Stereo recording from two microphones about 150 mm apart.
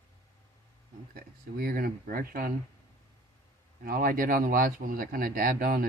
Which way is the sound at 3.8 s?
70° right (ahead or behind).